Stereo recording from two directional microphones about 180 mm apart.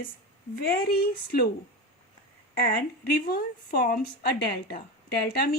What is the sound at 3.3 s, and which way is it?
A woman's voice, 55° left (ahead or behind).